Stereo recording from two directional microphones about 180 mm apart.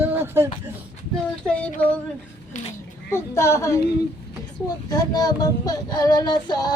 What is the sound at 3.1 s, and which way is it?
Speech, 15° left (ahead or behind).